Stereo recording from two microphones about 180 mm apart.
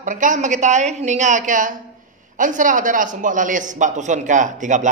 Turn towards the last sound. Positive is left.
turn(degrees=-45)  # may be behind; listen again after turning